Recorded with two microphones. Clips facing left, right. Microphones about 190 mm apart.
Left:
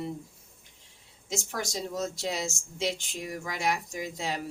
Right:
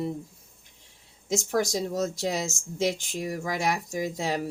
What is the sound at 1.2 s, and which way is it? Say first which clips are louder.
Speech: right 8 dB; 40° right (ahead or behind).